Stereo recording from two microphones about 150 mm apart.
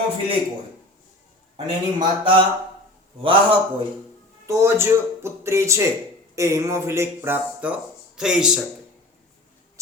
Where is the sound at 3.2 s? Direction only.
35° right (ahead or behind).